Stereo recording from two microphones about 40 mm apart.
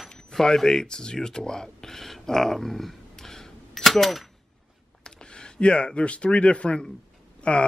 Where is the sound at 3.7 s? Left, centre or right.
Centre.